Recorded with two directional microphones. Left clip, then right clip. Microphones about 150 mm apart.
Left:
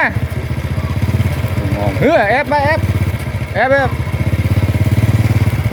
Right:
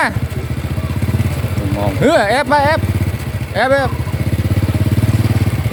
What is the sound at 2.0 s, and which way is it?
Speech, 15° right (ahead or behind).